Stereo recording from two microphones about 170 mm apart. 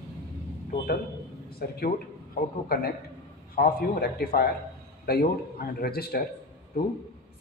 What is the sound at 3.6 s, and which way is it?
A man's voice, 65° left (ahead or behind).